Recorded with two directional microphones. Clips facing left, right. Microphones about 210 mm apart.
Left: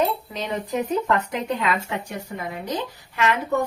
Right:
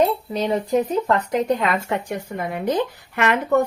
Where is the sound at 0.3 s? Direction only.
35° right (ahead or behind).